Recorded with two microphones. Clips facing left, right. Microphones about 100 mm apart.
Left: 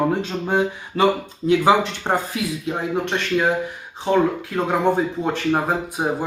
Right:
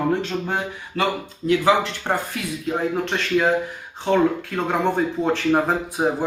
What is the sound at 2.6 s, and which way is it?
Speech, centre (ahead or behind).